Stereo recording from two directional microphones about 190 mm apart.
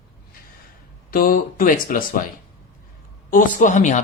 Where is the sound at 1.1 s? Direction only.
50° left (ahead or behind).